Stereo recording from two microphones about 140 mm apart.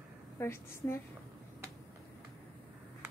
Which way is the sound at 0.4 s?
15° left (ahead or behind).